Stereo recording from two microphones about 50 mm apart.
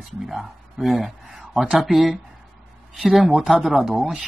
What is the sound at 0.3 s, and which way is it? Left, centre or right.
Speech, centre.